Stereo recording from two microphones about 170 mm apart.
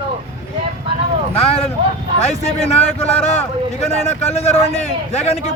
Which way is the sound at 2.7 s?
40° left (ahead or behind).